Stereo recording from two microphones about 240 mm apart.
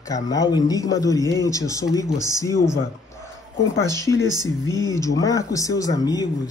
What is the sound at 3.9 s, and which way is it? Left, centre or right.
Speech, centre.